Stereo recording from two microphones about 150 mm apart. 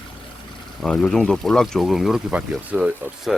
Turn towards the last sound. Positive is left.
turn(degrees=-5)  # may be behind; listen again after turning